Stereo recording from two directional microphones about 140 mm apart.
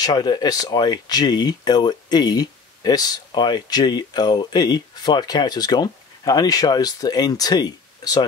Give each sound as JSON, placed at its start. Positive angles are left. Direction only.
{"t": 0.0, "sound": "speech", "side_deg": 30}